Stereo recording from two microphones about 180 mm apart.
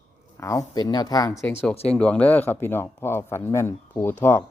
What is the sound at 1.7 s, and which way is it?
Speech, 35° left (ahead or behind).